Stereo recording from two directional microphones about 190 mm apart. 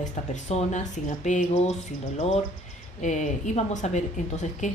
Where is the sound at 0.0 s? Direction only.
40° left (ahead or behind).